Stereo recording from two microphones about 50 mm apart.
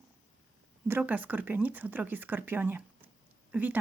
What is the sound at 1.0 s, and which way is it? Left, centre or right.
Speech, right.